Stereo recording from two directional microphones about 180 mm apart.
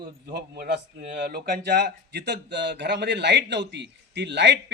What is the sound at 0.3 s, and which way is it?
A man's voice, 60° right (ahead or behind).